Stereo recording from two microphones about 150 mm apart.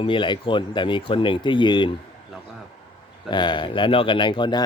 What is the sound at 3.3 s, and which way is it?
Speech, 30° left (ahead or behind).